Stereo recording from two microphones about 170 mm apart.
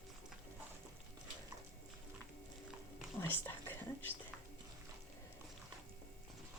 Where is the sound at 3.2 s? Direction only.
15° left (ahead or behind).